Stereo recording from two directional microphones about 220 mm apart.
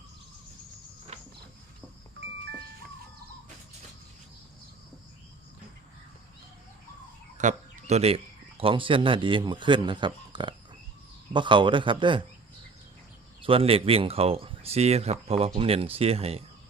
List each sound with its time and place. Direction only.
1.1 s a sound: 30° right (ahead or behind)
7.3 s speech: 30° right (ahead or behind)
13.4 s speech: 25° right (ahead or behind)